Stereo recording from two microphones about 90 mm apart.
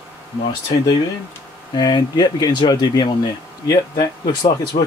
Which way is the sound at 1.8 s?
55° left (ahead or behind).